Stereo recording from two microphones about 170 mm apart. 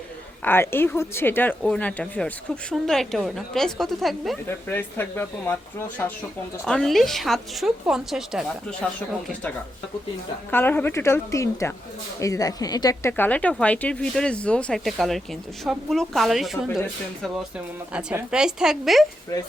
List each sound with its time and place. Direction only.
0.4 s speech: 15° left (ahead or behind)
4.4 s a woman's voice: 10° left (ahead or behind)
10.5 s a woman's voice: 10° left (ahead or behind)
19.3 s speech: 20° left (ahead or behind)